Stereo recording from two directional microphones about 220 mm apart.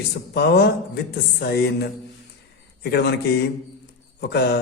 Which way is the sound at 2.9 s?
50° left (ahead or behind).